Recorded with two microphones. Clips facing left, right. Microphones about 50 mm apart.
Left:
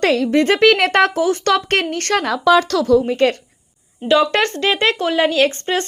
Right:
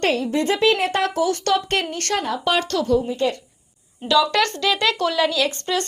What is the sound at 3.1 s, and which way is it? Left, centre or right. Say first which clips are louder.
Speech: left 6 dB; left.